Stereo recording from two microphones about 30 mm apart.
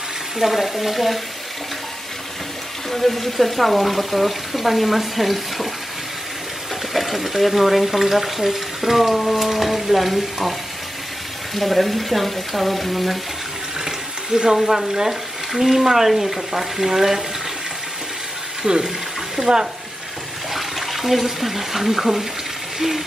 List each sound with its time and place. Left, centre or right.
0.4 s speech: centre
2.9 s speech: centre
6.9 s speech: centre
11.5 s speech: centre
14.3 s speech: right
14.6 s speech: centre
18.6 s speech: right
19.3 s speech: centre
20.5 s speech: centre